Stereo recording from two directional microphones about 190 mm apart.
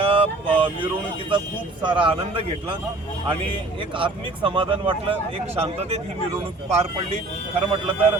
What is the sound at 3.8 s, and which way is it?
Speech, 25° right (ahead or behind).